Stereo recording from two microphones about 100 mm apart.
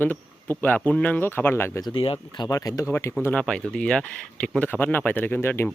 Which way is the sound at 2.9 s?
25° left (ahead or behind).